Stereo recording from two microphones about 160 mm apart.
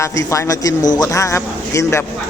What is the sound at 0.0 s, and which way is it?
Speech, 20° left (ahead or behind).